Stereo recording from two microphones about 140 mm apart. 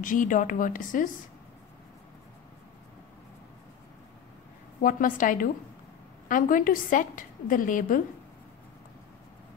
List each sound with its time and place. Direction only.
0.0 s a woman's voice: 70° left (ahead or behind)
4.8 s a woman's voice: 75° left (ahead or behind)